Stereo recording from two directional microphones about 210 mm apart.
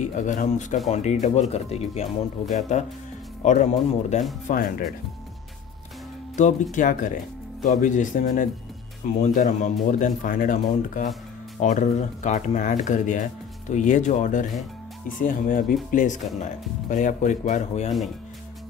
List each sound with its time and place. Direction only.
0.0 s speech: 35° left (ahead or behind)
3.4 s speech: 35° left (ahead or behind)
6.3 s speech: 35° left (ahead or behind)